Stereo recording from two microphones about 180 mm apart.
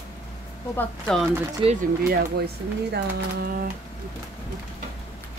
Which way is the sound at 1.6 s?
30° right (ahead or behind).